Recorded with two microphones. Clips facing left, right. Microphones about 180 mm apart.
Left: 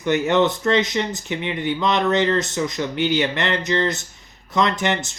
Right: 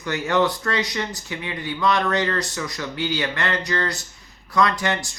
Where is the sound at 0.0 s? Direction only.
20° left (ahead or behind).